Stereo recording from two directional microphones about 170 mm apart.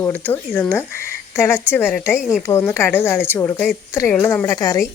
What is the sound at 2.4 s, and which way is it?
Speech, 15° left (ahead or behind).